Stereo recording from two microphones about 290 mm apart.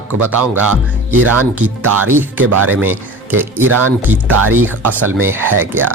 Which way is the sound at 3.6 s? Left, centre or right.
Right.